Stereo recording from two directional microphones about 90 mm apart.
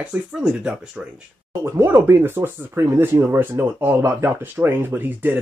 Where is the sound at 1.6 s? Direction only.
30° right (ahead or behind).